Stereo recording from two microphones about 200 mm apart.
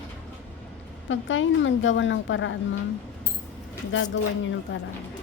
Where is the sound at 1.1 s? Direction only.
70° left (ahead or behind).